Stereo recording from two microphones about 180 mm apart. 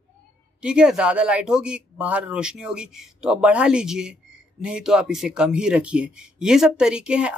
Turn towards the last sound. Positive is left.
turn(degrees=-5)  # may be behind; listen again after turning